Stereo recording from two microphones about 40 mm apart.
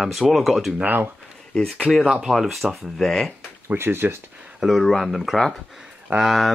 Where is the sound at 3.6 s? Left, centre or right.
Right.